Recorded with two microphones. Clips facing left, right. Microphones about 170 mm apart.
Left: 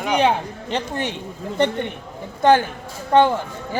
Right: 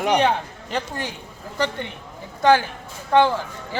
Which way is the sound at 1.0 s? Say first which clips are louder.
Left 6 dB; 70° left (ahead or behind).